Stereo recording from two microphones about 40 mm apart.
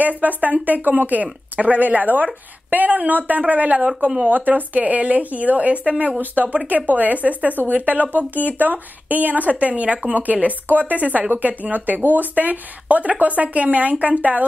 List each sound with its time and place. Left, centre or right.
0.0 s a woman's voice: right